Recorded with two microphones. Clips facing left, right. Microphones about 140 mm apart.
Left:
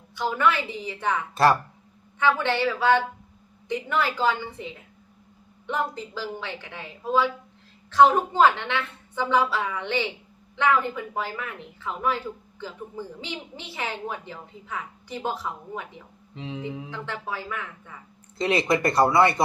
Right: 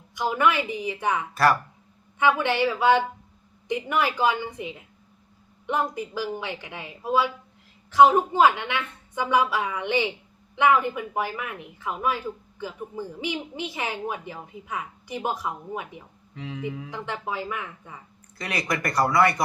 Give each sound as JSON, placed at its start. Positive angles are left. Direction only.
{"t": 0.2, "sound": "speech", "side_deg": -15}
{"t": 16.3, "sound": "speech", "side_deg": 25}
{"t": 16.9, "sound": "speech", "side_deg": -15}
{"t": 18.3, "sound": "speech", "side_deg": 25}